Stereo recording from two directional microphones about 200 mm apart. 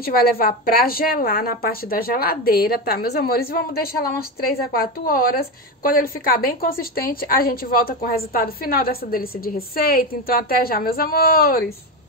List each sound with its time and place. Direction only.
0.0 s a woman's voice: 45° left (ahead or behind)